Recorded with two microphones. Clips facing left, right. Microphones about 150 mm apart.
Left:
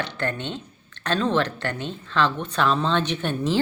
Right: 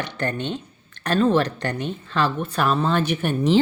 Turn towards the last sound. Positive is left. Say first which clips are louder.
# right 4 dB
turn(degrees=-10)  # may be behind; listen again after turning